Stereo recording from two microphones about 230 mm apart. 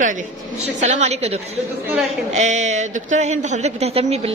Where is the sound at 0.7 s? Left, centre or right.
Right.